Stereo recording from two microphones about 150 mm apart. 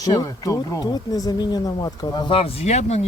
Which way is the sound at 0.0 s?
25° left (ahead or behind).